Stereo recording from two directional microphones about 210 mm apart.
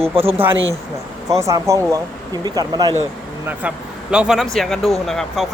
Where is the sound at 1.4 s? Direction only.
15° right (ahead or behind).